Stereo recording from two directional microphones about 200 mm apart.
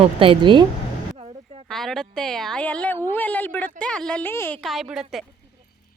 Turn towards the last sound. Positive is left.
turn(degrees=0)  # may be behind; listen again after turning